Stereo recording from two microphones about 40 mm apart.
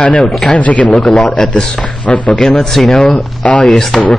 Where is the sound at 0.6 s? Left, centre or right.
Left.